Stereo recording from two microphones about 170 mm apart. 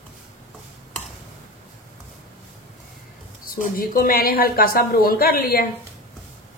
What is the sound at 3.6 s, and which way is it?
Speech, 55° left (ahead or behind).